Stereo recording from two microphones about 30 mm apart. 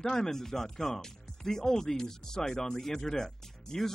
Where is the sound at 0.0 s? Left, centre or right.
Centre.